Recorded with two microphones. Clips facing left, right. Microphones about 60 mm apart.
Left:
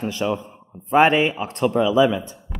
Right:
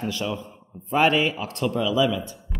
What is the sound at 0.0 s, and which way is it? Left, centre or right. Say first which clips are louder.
Speech: left 5 dB; left.